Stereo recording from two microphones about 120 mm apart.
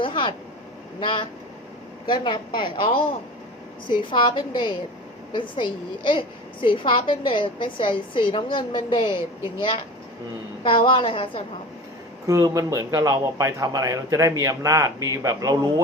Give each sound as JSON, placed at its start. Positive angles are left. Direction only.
{"t": 0.0, "sound": "vehicle", "side_deg": 45}
{"t": 0.9, "sound": "a woman's voice", "side_deg": 45}
{"t": 12.3, "sound": "speech", "side_deg": -30}